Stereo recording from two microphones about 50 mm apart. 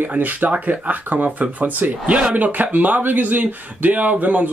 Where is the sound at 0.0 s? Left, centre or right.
Right.